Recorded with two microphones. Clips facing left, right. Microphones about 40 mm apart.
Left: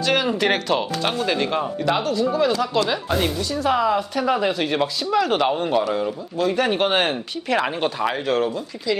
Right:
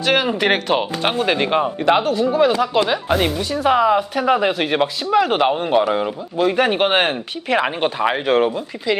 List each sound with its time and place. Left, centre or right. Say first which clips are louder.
0.0 s speech: right 3 dB; right
5.8 s speech: right 4 dB; right